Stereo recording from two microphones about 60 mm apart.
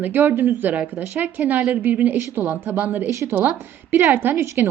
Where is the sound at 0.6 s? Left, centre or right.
Right.